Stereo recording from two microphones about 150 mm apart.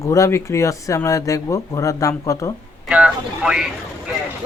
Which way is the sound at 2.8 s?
5° right (ahead or behind).